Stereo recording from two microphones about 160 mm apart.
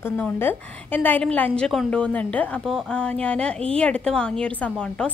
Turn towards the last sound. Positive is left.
turn(degrees=5)  # may be behind; listen again after turning